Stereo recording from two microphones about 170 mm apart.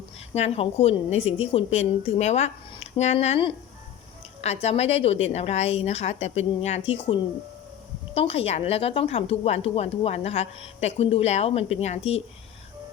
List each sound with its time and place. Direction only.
0.3 s a woman's voice: 40° left (ahead or behind)